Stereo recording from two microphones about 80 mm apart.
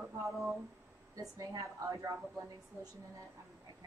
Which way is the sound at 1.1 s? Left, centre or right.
Right.